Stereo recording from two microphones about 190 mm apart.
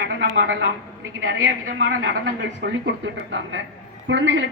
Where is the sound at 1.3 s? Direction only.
90° right.